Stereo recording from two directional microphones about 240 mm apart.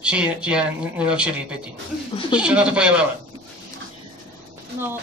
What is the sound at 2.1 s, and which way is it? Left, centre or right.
Speech, centre.